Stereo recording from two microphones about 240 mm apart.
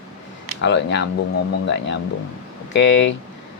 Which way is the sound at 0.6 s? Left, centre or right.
Left.